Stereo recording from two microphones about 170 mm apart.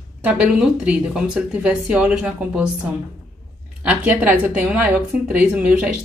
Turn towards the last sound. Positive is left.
turn(degrees=-10)  # may be behind; listen again after turning